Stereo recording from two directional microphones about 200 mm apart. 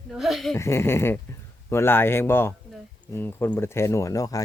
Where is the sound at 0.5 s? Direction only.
15° left (ahead or behind).